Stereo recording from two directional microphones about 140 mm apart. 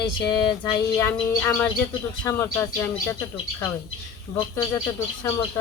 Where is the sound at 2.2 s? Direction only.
25° left (ahead or behind).